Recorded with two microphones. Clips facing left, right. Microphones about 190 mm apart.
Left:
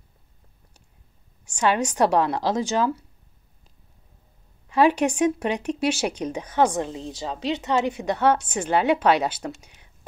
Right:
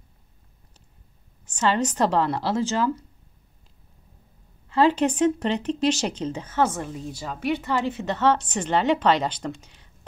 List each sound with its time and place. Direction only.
1.4 s speech: 15° left (ahead or behind)
4.6 s speech: 15° left (ahead or behind)